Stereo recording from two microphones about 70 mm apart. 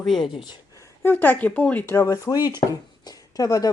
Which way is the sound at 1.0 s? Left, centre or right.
Left.